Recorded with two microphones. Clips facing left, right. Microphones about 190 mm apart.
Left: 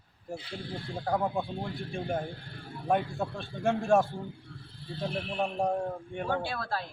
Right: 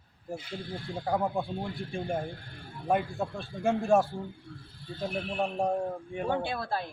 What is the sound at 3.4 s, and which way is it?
Speech, centre (ahead or behind).